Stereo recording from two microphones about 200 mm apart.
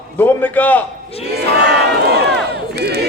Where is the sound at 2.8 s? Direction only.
55° right (ahead or behind).